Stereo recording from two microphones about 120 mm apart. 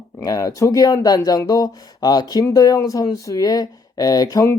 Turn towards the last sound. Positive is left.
turn(degrees=30)  # may be behind; listen again after turning